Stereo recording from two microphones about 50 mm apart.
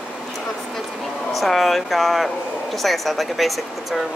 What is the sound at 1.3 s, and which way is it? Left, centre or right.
Speech, centre.